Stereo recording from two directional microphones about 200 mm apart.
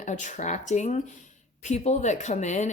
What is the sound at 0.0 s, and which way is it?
Speech, 35° left (ahead or behind).